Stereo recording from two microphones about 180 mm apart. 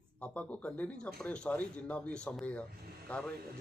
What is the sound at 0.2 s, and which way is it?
A man's voice, 5° left (ahead or behind).